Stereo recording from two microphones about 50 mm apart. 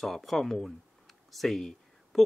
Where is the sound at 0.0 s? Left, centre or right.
Centre.